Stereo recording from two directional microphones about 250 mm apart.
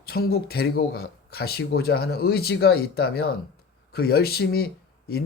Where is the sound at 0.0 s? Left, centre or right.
Left.